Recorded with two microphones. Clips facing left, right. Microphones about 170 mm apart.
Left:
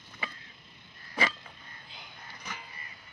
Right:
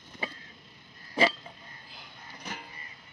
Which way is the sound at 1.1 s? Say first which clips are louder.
Right 6 dB; 30° right (ahead or behind).